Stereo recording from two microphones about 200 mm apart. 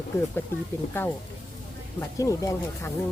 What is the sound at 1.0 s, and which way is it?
A woman's voice, 10° left (ahead or behind).